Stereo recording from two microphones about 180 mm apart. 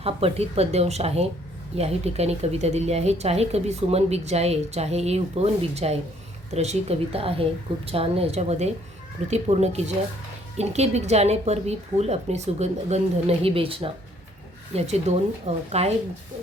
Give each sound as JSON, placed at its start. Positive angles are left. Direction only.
{"t": 0.0, "sound": "speech", "side_deg": -35}